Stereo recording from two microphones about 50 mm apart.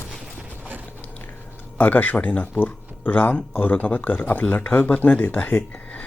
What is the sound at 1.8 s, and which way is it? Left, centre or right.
Speech, left.